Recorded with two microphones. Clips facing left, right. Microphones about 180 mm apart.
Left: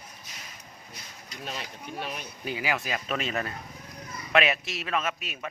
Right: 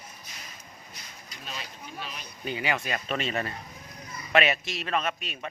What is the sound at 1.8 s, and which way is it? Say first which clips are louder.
Speech: left 5 dB; 55° left (ahead or behind).